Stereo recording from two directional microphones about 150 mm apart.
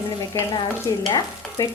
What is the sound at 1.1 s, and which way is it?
Stir, 30° left (ahead or behind).